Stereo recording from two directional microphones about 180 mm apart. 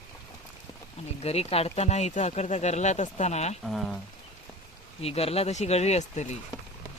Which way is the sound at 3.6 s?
Centre (ahead or behind).